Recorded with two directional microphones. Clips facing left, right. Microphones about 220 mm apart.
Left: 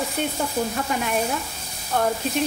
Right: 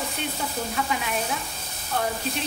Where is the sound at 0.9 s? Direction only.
45° left (ahead or behind).